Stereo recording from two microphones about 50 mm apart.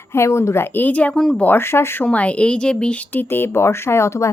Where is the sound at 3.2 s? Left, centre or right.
Left.